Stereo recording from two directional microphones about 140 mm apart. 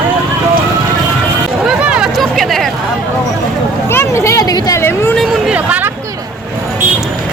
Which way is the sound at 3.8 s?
20° left (ahead or behind).